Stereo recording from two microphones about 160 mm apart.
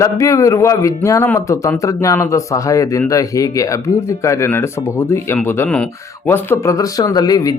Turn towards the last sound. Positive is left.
turn(degrees=25)  # may be behind; listen again after turning